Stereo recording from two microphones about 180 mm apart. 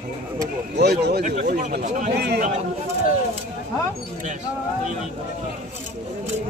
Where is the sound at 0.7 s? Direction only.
65° right (ahead or behind).